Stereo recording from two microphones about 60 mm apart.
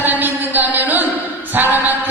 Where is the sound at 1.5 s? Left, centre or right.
Right.